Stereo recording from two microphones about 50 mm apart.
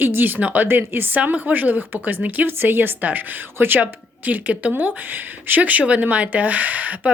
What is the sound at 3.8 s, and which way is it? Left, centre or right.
Speech, right.